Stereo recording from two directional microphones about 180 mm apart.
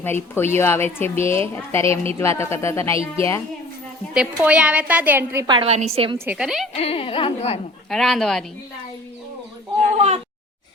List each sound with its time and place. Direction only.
0.0 s speech: 10° left (ahead or behind)
4.1 s a woman's voice: 5° right (ahead or behind)
5.5 s a woman's voice: 30° right (ahead or behind)
6.1 s speech: 10° right (ahead or behind)
6.7 s speech: 30° left (ahead or behind)
7.9 s speech: centre (ahead or behind)